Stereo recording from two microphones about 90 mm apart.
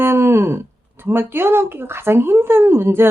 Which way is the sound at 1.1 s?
25° right (ahead or behind).